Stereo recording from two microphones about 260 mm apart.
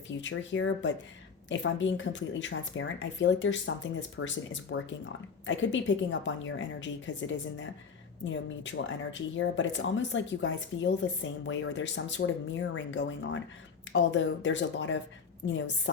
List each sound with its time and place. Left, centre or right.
0.1 s speech: left